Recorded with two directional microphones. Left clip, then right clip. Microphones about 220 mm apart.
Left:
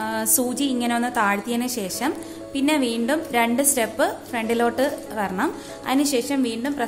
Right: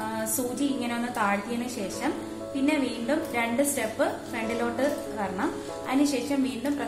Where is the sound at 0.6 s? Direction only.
50° left (ahead or behind).